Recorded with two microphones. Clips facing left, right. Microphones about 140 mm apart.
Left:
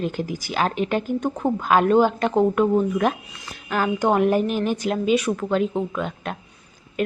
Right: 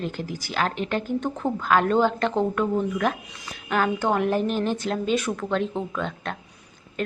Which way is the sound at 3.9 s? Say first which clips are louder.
Left 4 dB; 15° left (ahead or behind).